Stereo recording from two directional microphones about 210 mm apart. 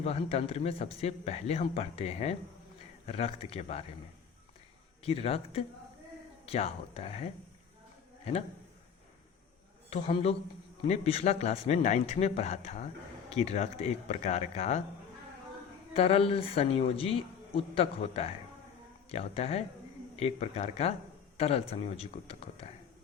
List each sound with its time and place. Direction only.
0.0 s a man's voice: 30° left (ahead or behind)
5.0 s a man's voice: 30° left (ahead or behind)
9.9 s a man's voice: 30° left (ahead or behind)
15.9 s a man's voice: 30° left (ahead or behind)